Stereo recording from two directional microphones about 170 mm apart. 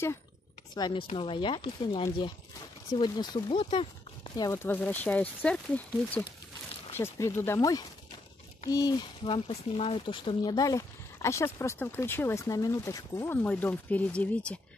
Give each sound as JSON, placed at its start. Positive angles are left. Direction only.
{"t": 0.7, "sound": "speech", "side_deg": 30}
{"t": 4.4, "sound": "speech", "side_deg": 15}